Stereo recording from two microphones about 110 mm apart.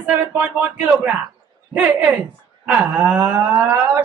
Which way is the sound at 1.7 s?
15° right (ahead or behind).